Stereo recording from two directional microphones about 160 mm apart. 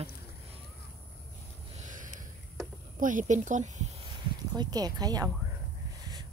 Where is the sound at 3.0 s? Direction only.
55° right (ahead or behind).